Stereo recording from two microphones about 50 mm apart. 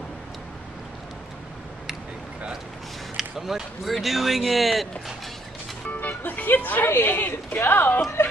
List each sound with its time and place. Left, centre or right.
3.2 s speech: centre
5.9 s music: left
6.9 s speech: left